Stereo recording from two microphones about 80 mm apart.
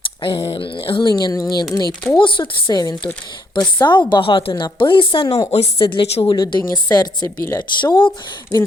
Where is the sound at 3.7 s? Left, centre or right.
Left.